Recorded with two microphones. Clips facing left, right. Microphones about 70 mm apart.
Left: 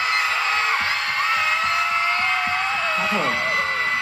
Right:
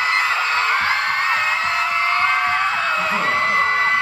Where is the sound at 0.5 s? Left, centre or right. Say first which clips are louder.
Right 3 dB; right.